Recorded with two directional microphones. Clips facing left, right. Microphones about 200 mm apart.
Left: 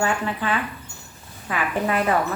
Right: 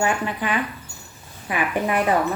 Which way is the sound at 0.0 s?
15° right (ahead or behind).